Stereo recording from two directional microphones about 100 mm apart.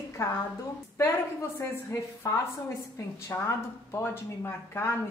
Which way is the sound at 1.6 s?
30° left (ahead or behind).